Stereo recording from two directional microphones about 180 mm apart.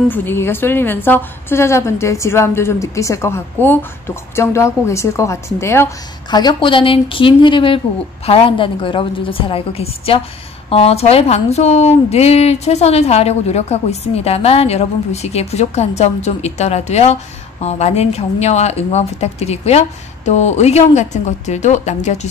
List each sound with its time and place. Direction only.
0.1 s a woman's voice: 10° left (ahead or behind)
6.3 s a woman's voice: 25° left (ahead or behind)